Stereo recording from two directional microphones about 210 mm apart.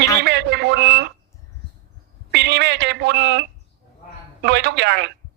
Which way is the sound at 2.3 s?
55° right (ahead or behind).